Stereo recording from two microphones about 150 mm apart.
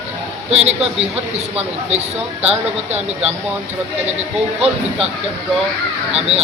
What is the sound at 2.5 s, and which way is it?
Speech, 45° right (ahead or behind).